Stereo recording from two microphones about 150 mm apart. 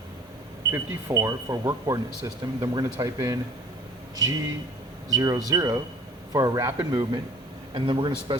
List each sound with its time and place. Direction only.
0.7 s speech: 20° right (ahead or behind)